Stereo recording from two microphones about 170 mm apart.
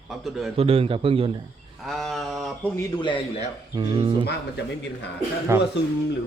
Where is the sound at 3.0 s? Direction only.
30° left (ahead or behind).